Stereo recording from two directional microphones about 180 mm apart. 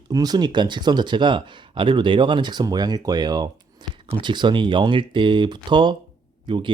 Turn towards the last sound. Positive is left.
turn(degrees=-25)  # may be behind; listen again after turning